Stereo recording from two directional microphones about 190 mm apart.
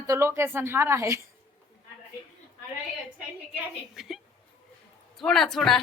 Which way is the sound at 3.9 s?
Centre (ahead or behind).